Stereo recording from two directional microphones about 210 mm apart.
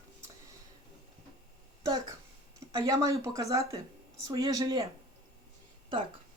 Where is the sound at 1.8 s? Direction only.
20° right (ahead or behind).